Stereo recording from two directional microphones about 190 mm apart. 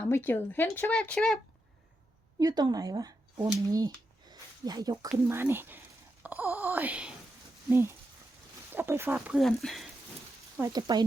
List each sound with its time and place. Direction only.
0.0 s speech: 10° left (ahead or behind)
2.4 s speech: 20° right (ahead or behind)
3.7 s a sound: 20° right (ahead or behind)
5.3 s speech: 10° right (ahead or behind)
9.1 s speech: centre (ahead or behind)
10.6 s speech: 20° right (ahead or behind)